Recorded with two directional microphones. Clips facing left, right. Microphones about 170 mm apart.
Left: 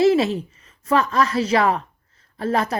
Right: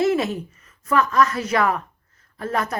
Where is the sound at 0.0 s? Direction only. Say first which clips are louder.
Left 4 dB; 30° left (ahead or behind).